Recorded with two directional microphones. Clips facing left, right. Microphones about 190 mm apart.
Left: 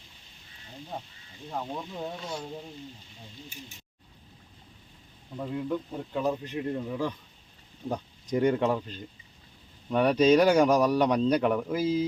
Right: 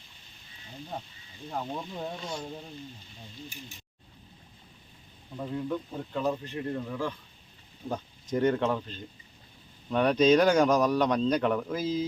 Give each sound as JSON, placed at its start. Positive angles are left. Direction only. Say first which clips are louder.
{"t": 1.5, "sound": "speech", "louder": "even", "side_deg": 5}
{"t": 5.4, "sound": "a man's voice", "louder": "left 1 dB", "side_deg": 5}
{"t": 8.3, "sound": "a man's voice", "louder": "left 1 dB", "side_deg": 10}